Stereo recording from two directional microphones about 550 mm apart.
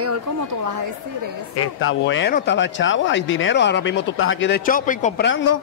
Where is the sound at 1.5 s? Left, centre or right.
Left.